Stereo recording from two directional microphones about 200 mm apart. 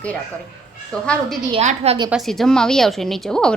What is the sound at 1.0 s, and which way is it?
Speech, 5° left (ahead or behind).